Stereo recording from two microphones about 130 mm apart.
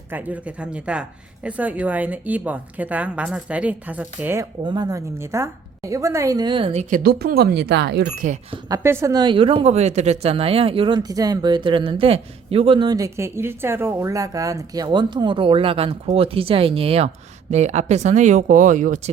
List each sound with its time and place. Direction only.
0.1 s a woman's voice: 10° right (ahead or behind)
4.6 s speech: 35° right (ahead or behind)
7.2 s speech: 90° right
8.7 s speech: 20° right (ahead or behind)
9.1 s speech: 40° right (ahead or behind)
11.1 s speech: 30° right (ahead or behind); by 17.1 s 45° right (ahead or behind)
17.5 s speech: 60° right (ahead or behind)